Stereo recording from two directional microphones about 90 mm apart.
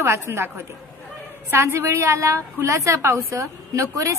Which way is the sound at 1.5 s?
30° right (ahead or behind).